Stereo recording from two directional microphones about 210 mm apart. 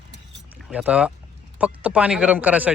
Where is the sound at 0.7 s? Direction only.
5° right (ahead or behind).